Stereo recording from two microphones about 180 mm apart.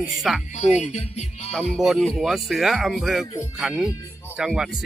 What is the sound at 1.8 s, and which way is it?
Speech, centre (ahead or behind).